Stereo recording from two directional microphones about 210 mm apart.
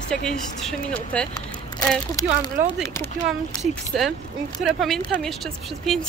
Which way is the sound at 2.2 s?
15° left (ahead or behind).